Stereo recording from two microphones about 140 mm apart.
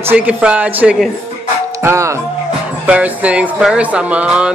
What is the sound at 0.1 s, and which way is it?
Speech, 10° right (ahead or behind).